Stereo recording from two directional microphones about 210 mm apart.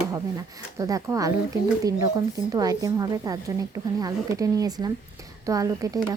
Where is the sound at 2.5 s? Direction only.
15° right (ahead or behind).